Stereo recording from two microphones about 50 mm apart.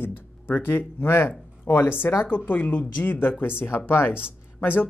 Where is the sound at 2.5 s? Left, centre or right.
Left.